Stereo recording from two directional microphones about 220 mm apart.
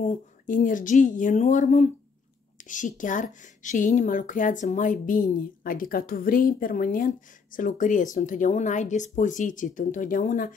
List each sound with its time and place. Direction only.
0.1 s speech: 35° left (ahead or behind)